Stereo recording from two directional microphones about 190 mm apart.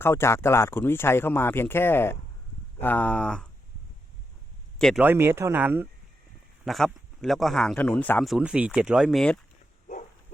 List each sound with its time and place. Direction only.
0.0 s speech: 15° left (ahead or behind)
4.8 s speech: centre (ahead or behind)
5.0 s speech: 10° right (ahead or behind)
6.7 s speech: centre (ahead or behind)
8.3 s speech: 5° right (ahead or behind)